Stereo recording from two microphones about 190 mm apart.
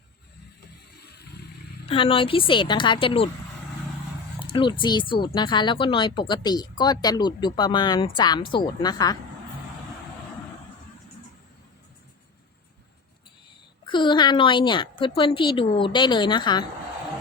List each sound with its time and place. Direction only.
1.9 s speech: 30° left (ahead or behind)
4.4 s speech: 25° left (ahead or behind)
13.8 s speech: 25° left (ahead or behind)